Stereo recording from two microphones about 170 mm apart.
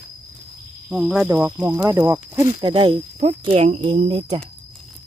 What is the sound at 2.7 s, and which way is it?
Speech, 35° right (ahead or behind).